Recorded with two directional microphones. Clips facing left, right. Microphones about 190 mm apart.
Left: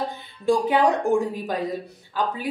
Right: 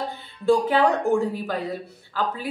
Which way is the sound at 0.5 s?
15° left (ahead or behind).